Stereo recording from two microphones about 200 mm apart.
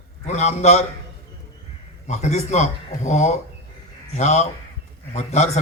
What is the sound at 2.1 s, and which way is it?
A man's voice, 35° left (ahead or behind).